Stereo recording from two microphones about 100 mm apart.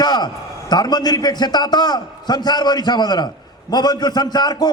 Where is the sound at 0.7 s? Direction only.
45° left (ahead or behind).